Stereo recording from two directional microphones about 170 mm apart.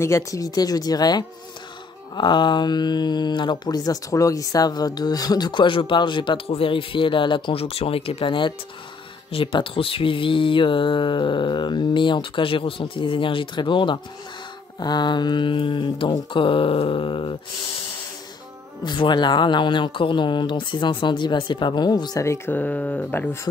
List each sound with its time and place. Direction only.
0.0 s speech: 20° left (ahead or behind)
18.9 s speech: 25° left (ahead or behind); by 23.5 s 10° left (ahead or behind)